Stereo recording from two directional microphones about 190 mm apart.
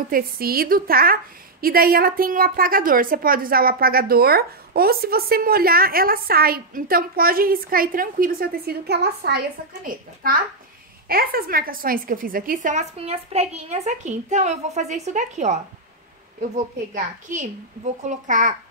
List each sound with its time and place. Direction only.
0.1 s a woman's voice: 50° right (ahead or behind)
16.9 s a woman's voice: 40° right (ahead or behind)